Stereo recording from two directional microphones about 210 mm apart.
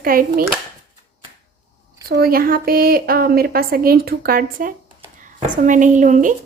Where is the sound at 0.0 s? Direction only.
45° right (ahead or behind).